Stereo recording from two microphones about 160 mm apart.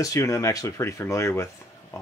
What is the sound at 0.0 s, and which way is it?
Speech, 20° left (ahead or behind).